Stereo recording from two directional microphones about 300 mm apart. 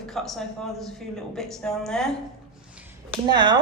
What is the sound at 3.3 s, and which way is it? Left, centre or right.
Speech, centre.